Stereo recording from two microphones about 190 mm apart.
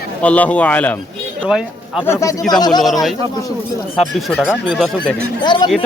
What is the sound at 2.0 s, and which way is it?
Speech, 15° left (ahead or behind).